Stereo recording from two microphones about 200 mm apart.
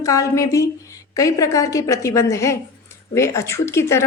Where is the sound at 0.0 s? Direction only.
15° left (ahead or behind).